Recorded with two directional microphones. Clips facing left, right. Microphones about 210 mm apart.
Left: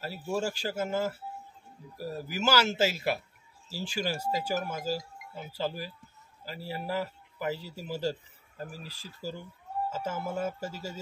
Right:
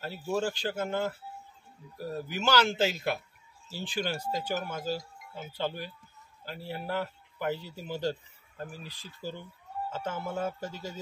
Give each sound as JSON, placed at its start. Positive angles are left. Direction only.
{"t": 0.0, "sound": "speech", "side_deg": 5}
{"t": 8.6, "sound": "speech", "side_deg": 35}
{"t": 9.2, "sound": "speech", "side_deg": 5}